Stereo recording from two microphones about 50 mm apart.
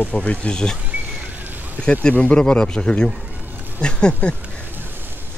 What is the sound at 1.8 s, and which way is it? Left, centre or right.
Speech, centre.